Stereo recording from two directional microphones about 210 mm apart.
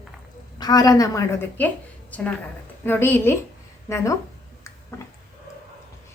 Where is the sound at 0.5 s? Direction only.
20° left (ahead or behind).